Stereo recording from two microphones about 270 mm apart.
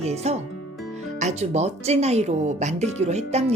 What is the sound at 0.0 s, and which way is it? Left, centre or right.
Speech, right.